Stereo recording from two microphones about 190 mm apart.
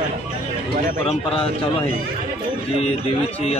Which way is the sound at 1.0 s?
30° left (ahead or behind).